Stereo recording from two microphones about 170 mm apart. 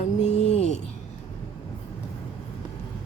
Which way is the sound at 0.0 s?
40° left (ahead or behind).